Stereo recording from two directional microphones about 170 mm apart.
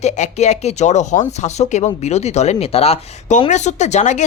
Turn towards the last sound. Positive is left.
turn(degrees=45)  # may be behind; listen again after turning